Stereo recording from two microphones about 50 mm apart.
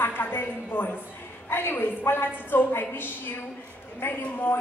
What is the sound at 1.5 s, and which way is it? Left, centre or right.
A woman's voice, left.